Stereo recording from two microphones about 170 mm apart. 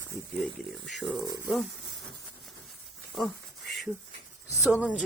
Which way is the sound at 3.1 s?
Centre (ahead or behind).